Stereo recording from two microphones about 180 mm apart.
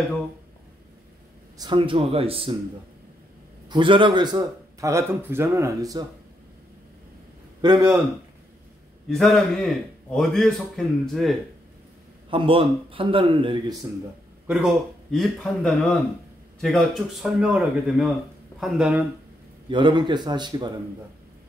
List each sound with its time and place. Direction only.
1.6 s speech: 25° right (ahead or behind)
3.6 s speech: 25° right (ahead or behind)
7.6 s speech: 20° right (ahead or behind)
9.1 s a man's voice: centre (ahead or behind)
12.3 s speech: 30° right (ahead or behind)
14.5 s a man's voice: centre (ahead or behind)
19.7 s speech: 25° right (ahead or behind)